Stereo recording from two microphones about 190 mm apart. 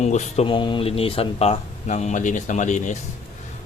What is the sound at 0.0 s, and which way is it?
Speech, 35° left (ahead or behind).